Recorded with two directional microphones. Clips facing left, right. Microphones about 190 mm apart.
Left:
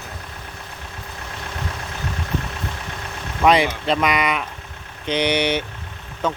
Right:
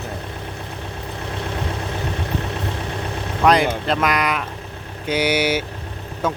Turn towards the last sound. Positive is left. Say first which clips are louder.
# right 1 dB
turn(degrees=-10)  # may be behind; listen again after turning